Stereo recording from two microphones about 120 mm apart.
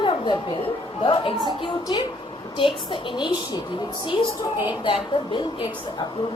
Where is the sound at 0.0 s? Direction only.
45° left (ahead or behind).